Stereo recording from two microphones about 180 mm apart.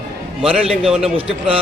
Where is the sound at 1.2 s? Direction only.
30° right (ahead or behind).